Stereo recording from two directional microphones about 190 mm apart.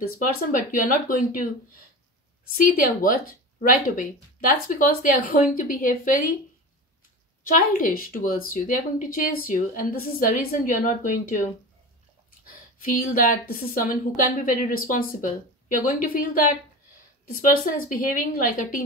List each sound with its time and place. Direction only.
0.5 s a woman's voice: 45° left (ahead or behind)
2.5 s a woman's voice: 50° left (ahead or behind)
7.4 s a woman's voice: 45° left (ahead or behind)
12.4 s a woman's voice: 50° left (ahead or behind)